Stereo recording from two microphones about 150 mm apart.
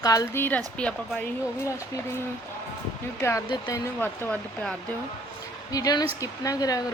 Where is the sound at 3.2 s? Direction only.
25° left (ahead or behind).